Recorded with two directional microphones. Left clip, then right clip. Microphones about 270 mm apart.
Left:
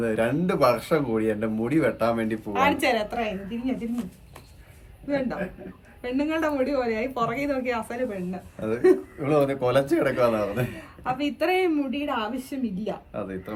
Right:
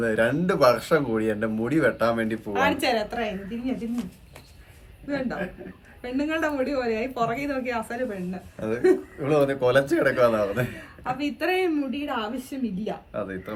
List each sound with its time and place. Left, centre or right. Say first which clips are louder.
0.0 s speech: right 2 dB; centre